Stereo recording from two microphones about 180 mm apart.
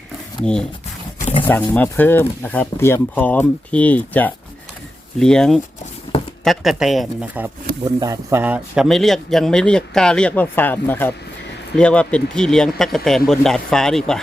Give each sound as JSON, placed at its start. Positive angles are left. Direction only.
{"t": 1.2, "sound": "wild animals", "side_deg": 35}
{"t": 1.5, "sound": "speech", "side_deg": 10}
{"t": 7.9, "sound": "speech", "side_deg": -20}